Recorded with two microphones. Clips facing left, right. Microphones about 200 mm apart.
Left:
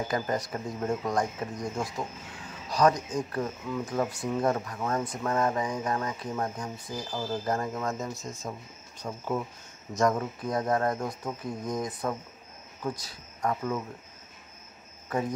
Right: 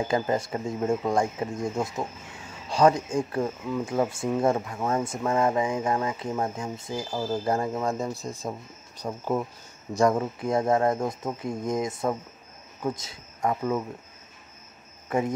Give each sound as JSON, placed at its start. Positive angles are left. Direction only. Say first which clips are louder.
{"t": 0.1, "sound": "speech", "louder": "right 4 dB", "side_deg": -25}